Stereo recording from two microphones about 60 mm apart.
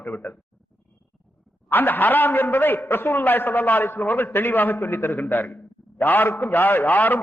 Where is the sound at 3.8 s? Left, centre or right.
Left.